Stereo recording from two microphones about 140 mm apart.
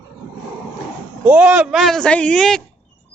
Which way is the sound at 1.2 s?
10° right (ahead or behind).